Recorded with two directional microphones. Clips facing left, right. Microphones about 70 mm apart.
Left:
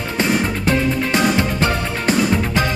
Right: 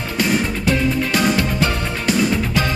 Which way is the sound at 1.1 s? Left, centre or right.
Left.